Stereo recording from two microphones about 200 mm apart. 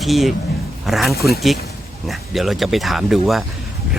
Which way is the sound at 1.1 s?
50° left (ahead or behind).